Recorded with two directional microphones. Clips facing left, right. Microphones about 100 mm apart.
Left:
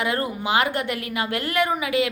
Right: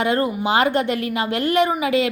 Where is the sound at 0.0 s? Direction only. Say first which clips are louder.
Right 5 dB; 30° right (ahead or behind).